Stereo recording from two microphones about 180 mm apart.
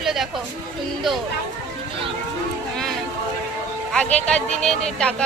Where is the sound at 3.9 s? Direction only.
5° left (ahead or behind).